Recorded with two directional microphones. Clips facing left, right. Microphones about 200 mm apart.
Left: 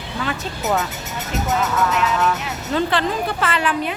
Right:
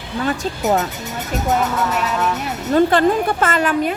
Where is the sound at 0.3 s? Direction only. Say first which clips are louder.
Right 5 dB; 40° right (ahead or behind).